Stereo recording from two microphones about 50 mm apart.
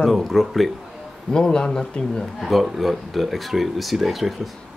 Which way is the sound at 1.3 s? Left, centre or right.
Centre.